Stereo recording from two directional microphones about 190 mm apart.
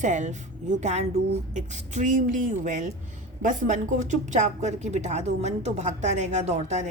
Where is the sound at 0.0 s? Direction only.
40° right (ahead or behind).